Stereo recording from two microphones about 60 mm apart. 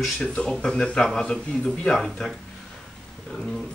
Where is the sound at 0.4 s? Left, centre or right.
Centre.